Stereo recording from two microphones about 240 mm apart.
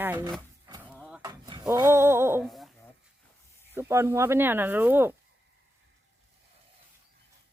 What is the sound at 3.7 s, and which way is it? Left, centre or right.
Speech, centre.